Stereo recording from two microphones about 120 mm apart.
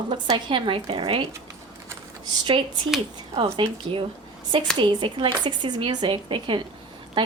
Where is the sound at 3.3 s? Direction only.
50° right (ahead or behind).